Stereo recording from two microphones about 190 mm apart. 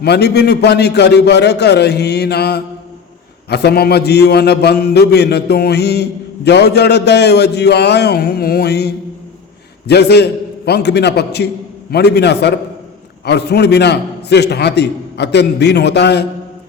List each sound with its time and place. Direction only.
0.0 s a man's voice: 60° left (ahead or behind)